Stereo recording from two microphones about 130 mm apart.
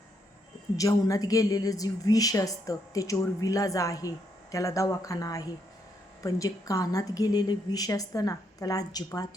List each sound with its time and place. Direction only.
0.8 s a woman's voice: 25° left (ahead or behind)